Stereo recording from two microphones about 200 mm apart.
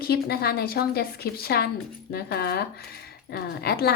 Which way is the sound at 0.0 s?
50° left (ahead or behind).